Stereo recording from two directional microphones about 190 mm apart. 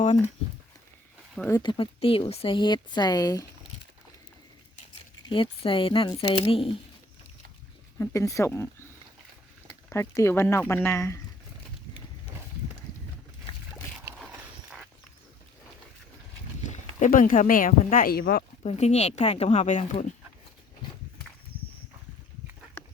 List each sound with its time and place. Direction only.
1.4 s speech: 15° left (ahead or behind)
1.6 s speech: 25° left (ahead or behind)
5.3 s speech: 25° left (ahead or behind)
7.9 s speech: 15° left (ahead or behind)
9.9 s speech: 15° left (ahead or behind)
14.2 s a sound: centre (ahead or behind)
16.6 s speech: 45° left (ahead or behind)
18.6 s speech: 35° left (ahead or behind)